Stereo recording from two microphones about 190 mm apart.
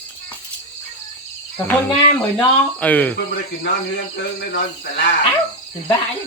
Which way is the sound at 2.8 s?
10° left (ahead or behind).